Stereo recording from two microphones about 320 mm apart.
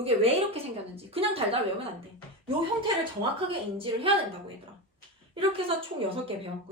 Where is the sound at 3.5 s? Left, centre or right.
Centre.